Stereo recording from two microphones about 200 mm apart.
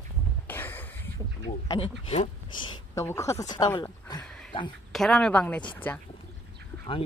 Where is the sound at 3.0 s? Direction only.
15° left (ahead or behind).